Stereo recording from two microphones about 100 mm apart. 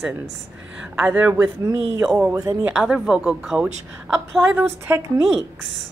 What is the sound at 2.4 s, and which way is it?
Speech, 35° right (ahead or behind).